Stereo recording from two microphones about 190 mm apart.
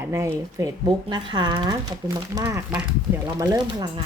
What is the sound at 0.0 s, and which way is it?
Speech, 15° right (ahead or behind).